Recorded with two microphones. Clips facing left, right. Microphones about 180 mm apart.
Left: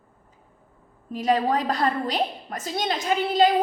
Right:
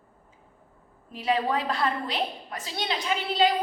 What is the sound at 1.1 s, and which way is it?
A woman's voice, 40° left (ahead or behind).